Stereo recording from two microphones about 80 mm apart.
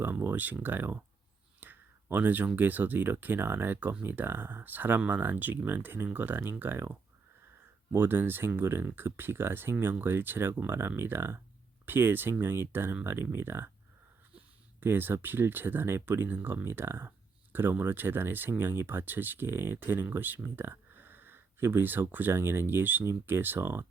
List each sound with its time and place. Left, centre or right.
0.0 s speech: right
1.6 s a sound: right
2.6 s speech: right
14.8 s speech: right